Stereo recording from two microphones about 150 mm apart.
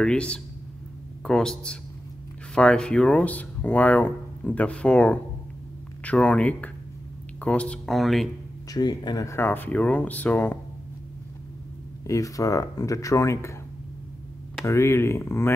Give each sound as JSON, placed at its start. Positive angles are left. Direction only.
{"t": 0.0, "sound": "speech", "side_deg": 5}
{"t": 8.7, "sound": "speech", "side_deg": 25}
{"t": 12.1, "sound": "speech", "side_deg": 20}
{"t": 14.7, "sound": "speech", "side_deg": 15}